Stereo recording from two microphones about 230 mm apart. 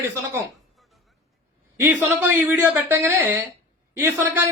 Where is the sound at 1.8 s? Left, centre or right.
Centre.